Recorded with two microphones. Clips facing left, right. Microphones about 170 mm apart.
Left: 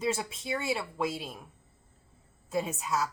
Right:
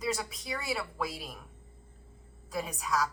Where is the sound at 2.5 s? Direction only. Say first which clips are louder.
Left 2 dB; 25° left (ahead or behind).